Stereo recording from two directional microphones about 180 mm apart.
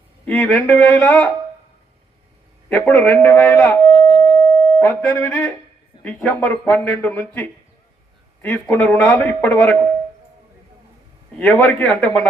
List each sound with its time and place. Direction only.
0.3 s speech: 10° left (ahead or behind)
2.6 s speech: 10° left (ahead or behind)
4.1 s busy signal: 25° right (ahead or behind)
4.4 s busy signal: 10° left (ahead or behind)
5.3 s speech: 5° left (ahead or behind)
11.3 s speech: 10° left (ahead or behind)